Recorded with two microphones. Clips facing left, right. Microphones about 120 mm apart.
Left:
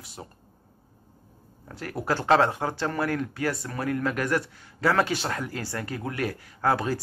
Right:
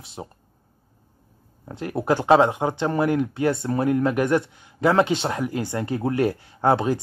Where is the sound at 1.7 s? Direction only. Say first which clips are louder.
Right 6 dB; 20° right (ahead or behind).